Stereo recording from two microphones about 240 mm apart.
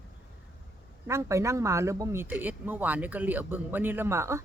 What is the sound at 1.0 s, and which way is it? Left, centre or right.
Speech, centre.